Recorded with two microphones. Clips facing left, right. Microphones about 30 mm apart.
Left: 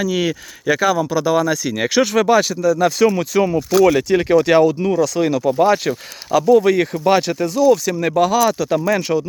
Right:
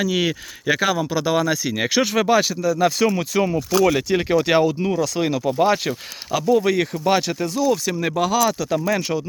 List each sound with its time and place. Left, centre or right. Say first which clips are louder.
0.0 s speech: left 2 dB; right
1.6 s speech: left 3 dB; centre
3.4 s speech: left 5 dB; centre
3.9 s speech: left 5 dB; centre
6.6 s speech: left 4 dB; centre
8.1 s speech: left 5 dB; centre
9.0 s speech: left 5 dB; centre